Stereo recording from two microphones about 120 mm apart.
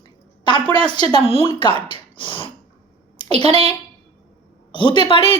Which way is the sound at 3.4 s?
55° right (ahead or behind).